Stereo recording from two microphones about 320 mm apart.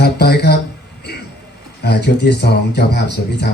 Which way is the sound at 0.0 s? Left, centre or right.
Left.